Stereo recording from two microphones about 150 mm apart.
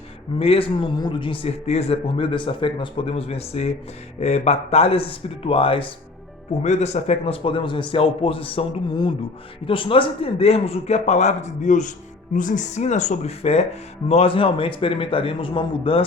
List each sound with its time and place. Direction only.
0.3 s a man's voice: 40° left (ahead or behind)
6.6 s a man's voice: 50° left (ahead or behind)